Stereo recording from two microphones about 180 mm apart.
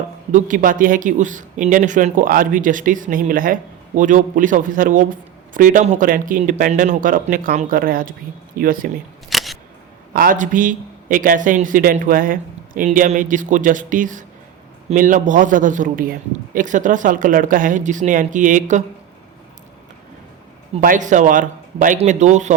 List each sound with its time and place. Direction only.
0.3 s speech: 45° right (ahead or behind)
9.3 s single-lens reflex camera: centre (ahead or behind)
10.2 s speech: 45° right (ahead or behind)
20.8 s speech: 45° right (ahead or behind)